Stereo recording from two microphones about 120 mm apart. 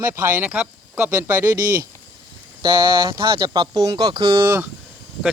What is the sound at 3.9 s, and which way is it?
Speech, 45° right (ahead or behind).